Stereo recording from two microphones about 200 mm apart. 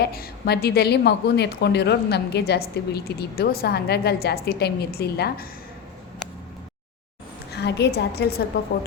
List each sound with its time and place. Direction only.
0.0 s a woman's voice: 50° left (ahead or behind)
7.5 s a woman's voice: 55° left (ahead or behind)